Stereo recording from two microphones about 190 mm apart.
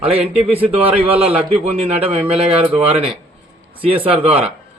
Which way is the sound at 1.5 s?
30° right (ahead or behind).